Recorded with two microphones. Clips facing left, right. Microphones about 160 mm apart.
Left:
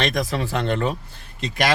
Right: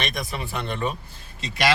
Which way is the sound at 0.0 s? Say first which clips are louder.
Left 7 dB; 90° left.